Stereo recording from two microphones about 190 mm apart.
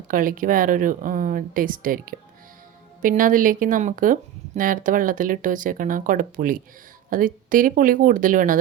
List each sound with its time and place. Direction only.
0.1 s speech: 45° right (ahead or behind)